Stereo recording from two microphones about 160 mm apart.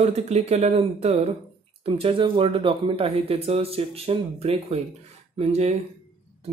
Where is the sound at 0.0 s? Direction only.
40° right (ahead or behind).